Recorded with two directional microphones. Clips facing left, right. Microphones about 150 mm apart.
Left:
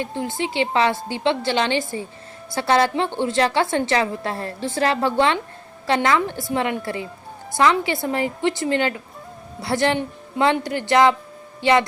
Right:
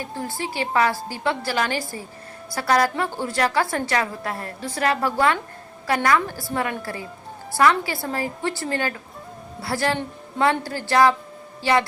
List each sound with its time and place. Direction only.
0.0 s a woman's voice: 20° left (ahead or behind)